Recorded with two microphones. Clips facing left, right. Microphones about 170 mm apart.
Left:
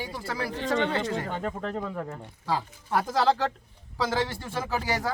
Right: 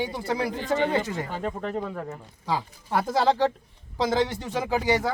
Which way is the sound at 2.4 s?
15° right (ahead or behind).